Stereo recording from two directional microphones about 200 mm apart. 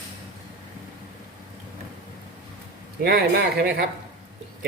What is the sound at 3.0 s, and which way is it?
Speech, 50° right (ahead or behind).